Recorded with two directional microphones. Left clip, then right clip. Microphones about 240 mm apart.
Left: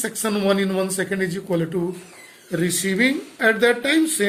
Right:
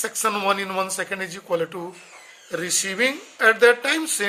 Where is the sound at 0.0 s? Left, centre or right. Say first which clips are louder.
Even; right.